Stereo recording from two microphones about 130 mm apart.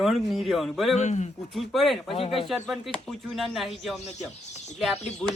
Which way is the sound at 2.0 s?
50° left (ahead or behind).